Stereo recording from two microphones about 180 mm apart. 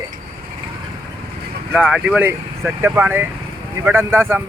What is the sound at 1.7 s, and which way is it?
Speech, 5° right (ahead or behind).